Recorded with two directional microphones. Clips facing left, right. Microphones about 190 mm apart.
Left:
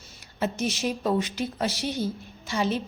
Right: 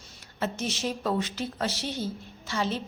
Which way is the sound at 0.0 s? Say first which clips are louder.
Left 3 dB; 10° left (ahead or behind).